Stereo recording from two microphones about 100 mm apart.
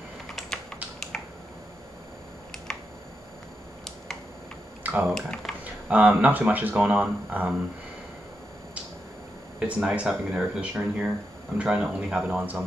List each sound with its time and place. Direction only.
1.1 s finger snapping: 5° left (ahead or behind)
4.8 s typing: 15° right (ahead or behind)
5.1 s speech: 5° left (ahead or behind)
5.6 s speech: 15° right (ahead or behind)
9.6 s speech: 10° right (ahead or behind)